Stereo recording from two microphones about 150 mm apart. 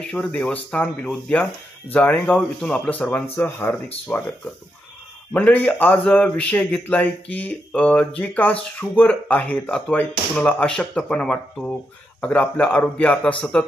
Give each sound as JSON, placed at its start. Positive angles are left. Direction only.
{"t": 0.0, "sound": "speech", "side_deg": 5}
{"t": 5.3, "sound": "speech", "side_deg": 10}